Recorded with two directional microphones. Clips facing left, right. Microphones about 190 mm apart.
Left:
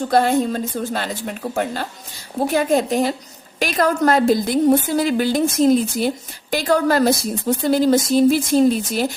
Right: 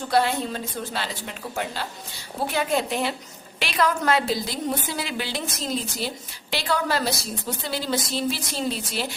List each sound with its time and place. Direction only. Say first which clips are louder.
0.1 s a woman's voice: left 5 dB; 45° left (ahead or behind)